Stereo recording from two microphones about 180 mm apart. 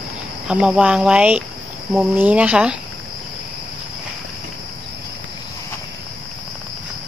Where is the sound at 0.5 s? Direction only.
5° right (ahead or behind).